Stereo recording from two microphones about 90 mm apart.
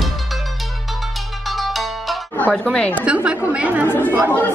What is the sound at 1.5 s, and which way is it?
Music, centre (ahead or behind).